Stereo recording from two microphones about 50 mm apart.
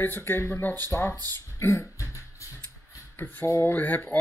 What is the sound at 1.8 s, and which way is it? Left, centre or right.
Beatboxing, left.